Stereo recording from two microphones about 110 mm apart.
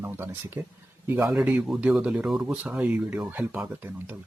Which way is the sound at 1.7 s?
5° right (ahead or behind).